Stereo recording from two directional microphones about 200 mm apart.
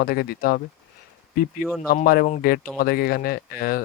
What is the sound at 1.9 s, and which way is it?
Speech, 50° left (ahead or behind).